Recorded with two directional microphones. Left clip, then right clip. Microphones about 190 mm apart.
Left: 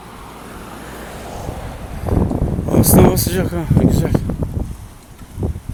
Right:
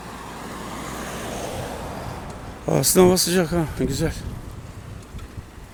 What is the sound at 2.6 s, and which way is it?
Speech, 15° right (ahead or behind).